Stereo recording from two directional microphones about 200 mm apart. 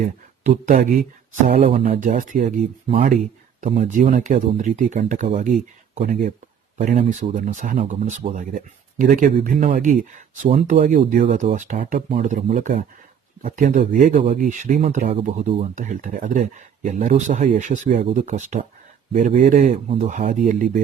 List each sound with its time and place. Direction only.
0.0 s speech: 40° right (ahead or behind)
1.5 s speech: 30° right (ahead or behind)